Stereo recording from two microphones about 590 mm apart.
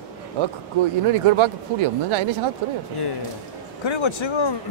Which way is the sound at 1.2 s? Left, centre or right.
Right.